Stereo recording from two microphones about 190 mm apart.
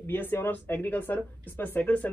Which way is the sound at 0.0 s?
10° left (ahead or behind).